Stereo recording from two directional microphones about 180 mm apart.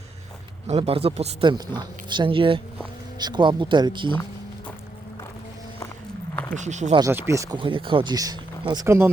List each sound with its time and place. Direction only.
0.7 s speech: 35° right (ahead or behind)
6.3 s a sound: 10° left (ahead or behind)
6.6 s speech: 40° right (ahead or behind)
7.1 s speech: 15° right (ahead or behind)